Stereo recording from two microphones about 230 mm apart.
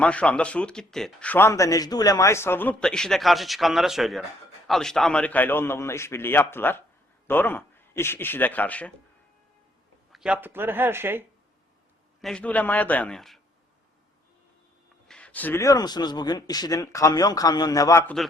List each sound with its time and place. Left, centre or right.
0.0 s a man's voice: centre
10.1 s speech: centre
12.2 s speech: centre
15.0 s a man's voice: centre